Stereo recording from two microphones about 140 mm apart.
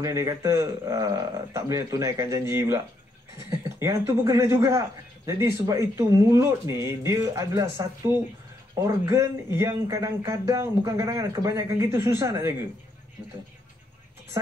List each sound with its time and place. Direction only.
0.0 s speech: 20° right (ahead or behind)